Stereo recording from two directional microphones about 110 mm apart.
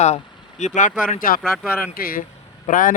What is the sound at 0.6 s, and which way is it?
Speech, 90° left.